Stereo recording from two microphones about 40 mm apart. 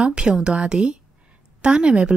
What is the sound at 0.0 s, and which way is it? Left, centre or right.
Speech, right.